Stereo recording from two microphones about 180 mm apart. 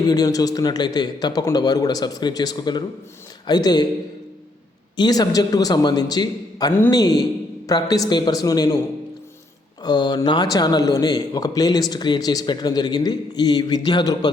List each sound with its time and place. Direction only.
0.0 s a man's voice: 20° left (ahead or behind)
4.9 s a man's voice: 20° left (ahead or behind)
9.8 s a man's voice: 25° left (ahead or behind)